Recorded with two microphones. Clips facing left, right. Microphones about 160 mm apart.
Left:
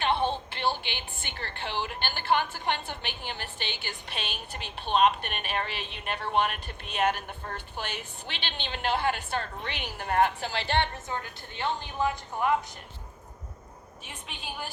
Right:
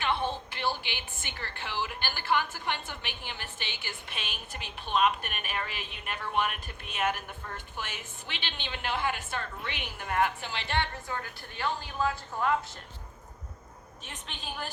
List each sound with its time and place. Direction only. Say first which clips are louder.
0.0 s a woman's voice: left 4 dB; 25° left (ahead or behind)
14.0 s a woman's voice: left 1 dB; 10° left (ahead or behind)